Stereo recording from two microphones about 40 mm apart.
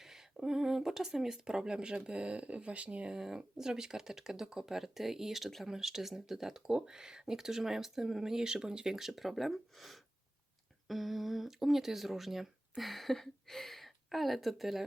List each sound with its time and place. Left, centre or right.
0.0 s speech: centre; by 3.2 s right
3.2 s speech: centre
5.6 s speech: centre